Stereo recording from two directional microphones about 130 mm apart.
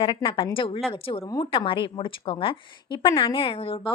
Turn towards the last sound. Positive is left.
turn(degrees=45)  # may be behind; listen again after turning